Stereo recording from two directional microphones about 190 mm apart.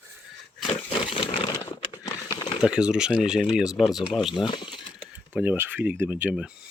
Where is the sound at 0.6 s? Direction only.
25° left (ahead or behind).